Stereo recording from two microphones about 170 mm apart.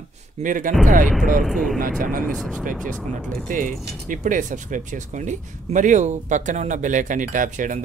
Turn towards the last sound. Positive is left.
turn(degrees=-50)  # may be behind; listen again after turning